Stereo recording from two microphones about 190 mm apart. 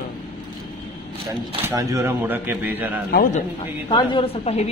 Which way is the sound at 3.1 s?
50° left (ahead or behind).